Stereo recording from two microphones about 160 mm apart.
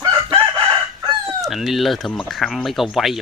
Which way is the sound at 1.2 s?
Centre (ahead or behind).